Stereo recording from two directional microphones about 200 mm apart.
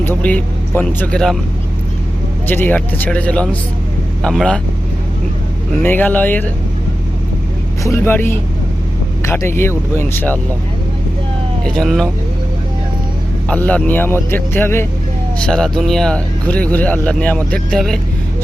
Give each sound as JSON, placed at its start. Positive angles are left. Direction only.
{"t": 0.0, "sound": "a man's voice", "side_deg": 10}
{"t": 2.5, "sound": "a man's voice", "side_deg": 10}
{"t": 5.8, "sound": "a man's voice", "side_deg": 10}
{"t": 7.9, "sound": "a man's voice", "side_deg": 10}
{"t": 11.6, "sound": "speech", "side_deg": 0}
{"t": 13.5, "sound": "a man's voice", "side_deg": 5}